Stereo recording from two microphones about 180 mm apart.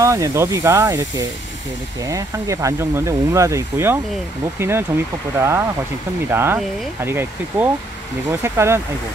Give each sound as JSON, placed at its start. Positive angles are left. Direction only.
{"t": 0.0, "sound": "speech", "side_deg": -15}